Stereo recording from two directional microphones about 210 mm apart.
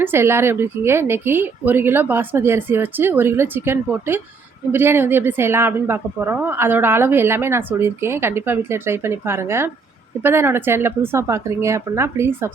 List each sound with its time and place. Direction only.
0.0 s a woman's voice: 10° right (ahead or behind)